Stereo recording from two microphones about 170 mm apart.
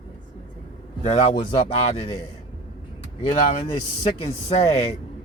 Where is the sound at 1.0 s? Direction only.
45° left (ahead or behind).